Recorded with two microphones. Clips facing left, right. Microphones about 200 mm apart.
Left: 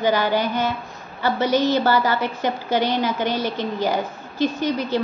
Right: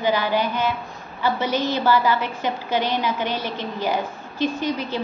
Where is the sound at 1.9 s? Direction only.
45° left (ahead or behind).